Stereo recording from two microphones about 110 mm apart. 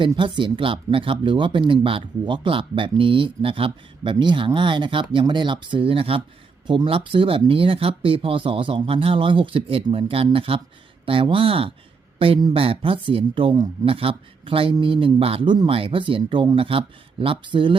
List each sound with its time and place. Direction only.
0.2 s speech: 50° right (ahead or behind)